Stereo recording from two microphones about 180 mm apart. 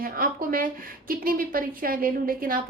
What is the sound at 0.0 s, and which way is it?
A woman's voice, 50° right (ahead or behind).